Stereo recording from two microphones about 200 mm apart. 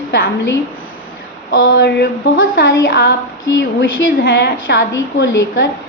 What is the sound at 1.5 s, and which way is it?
Speech, 60° left (ahead or behind).